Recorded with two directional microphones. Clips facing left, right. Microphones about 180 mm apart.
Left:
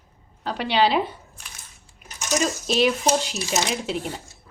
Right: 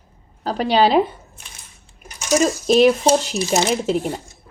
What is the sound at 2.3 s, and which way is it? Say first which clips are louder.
Speech: right 8 dB; 45° right (ahead or behind).